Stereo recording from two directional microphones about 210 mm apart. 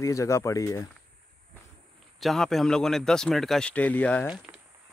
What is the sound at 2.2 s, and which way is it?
Speech, centre (ahead or behind).